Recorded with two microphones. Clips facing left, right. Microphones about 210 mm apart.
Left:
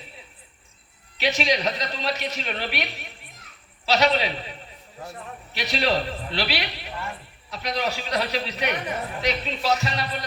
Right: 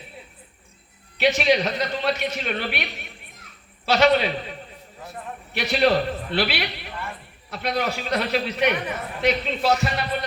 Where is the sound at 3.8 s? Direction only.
55° right (ahead or behind).